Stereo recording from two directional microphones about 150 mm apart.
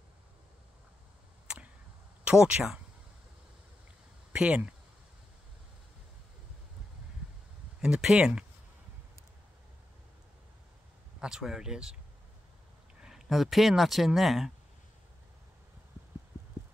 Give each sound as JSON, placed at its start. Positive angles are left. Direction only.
{"t": 2.2, "sound": "speech", "side_deg": -5}
{"t": 4.3, "sound": "speech", "side_deg": -10}
{"t": 7.8, "sound": "speech", "side_deg": -5}
{"t": 11.1, "sound": "speech", "side_deg": -5}
{"t": 13.0, "sound": "speech", "side_deg": 0}